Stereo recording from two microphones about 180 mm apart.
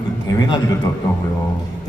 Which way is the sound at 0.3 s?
20° left (ahead or behind).